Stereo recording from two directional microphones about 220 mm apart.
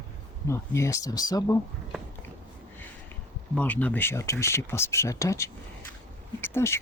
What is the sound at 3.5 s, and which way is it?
Speech, 5° left (ahead or behind).